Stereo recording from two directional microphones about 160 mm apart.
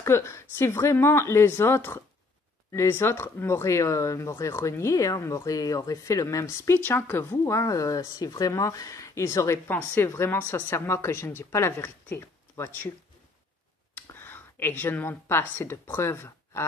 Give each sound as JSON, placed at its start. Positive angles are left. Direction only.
{"t": 0.0, "sound": "speech", "side_deg": 15}
{"t": 13.9, "sound": "speech", "side_deg": 15}